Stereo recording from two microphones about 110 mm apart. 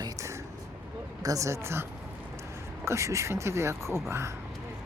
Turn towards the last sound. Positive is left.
turn(degrees=-25)  # may be behind; listen again after turning